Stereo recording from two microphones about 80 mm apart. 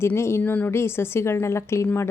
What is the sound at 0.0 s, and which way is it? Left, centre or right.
Speech, left.